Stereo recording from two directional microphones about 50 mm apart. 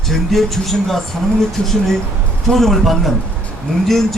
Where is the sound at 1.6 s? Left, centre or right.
Centre.